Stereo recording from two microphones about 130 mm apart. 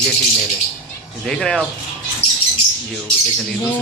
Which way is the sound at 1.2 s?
5° left (ahead or behind).